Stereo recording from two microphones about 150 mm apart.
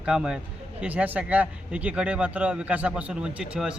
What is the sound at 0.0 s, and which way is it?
A man's voice, 5° right (ahead or behind).